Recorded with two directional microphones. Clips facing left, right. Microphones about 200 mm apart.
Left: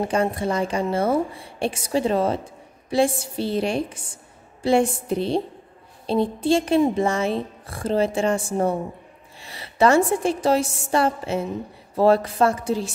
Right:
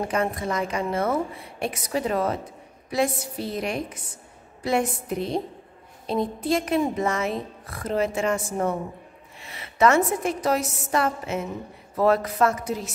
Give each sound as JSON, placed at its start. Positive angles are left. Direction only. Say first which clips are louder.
{"t": 0.0, "sound": "a woman's voice", "louder": "left 3 dB", "side_deg": 30}